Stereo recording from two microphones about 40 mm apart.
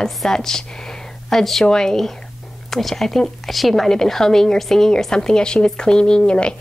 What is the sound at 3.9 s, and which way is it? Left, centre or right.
Speech, centre.